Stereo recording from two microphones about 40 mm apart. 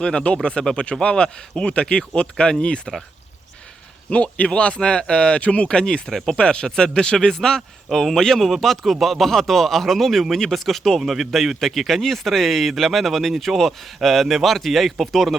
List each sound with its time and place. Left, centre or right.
0.0 s speech: left
4.1 s speech: left; by 15.4 s centre